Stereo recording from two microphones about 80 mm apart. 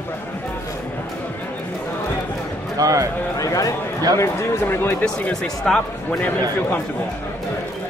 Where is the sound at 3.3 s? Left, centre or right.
Left.